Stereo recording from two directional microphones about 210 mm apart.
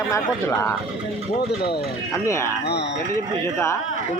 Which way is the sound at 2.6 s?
50° left (ahead or behind).